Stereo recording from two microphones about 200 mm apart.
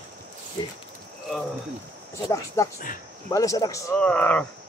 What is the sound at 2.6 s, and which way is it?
Speech, 15° left (ahead or behind).